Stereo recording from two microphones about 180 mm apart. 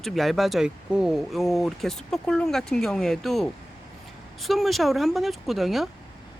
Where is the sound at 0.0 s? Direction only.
Centre (ahead or behind).